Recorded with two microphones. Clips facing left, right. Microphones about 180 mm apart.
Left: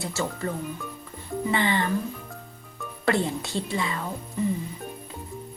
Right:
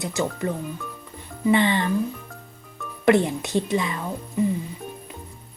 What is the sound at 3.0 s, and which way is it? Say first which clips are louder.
Speech: right 6 dB; 20° right (ahead or behind).